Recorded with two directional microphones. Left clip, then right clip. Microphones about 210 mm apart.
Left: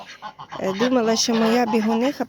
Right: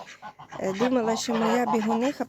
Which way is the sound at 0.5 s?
10° left (ahead or behind).